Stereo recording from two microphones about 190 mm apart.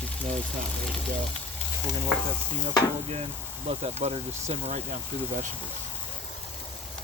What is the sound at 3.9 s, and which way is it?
Speech, 35° right (ahead or behind).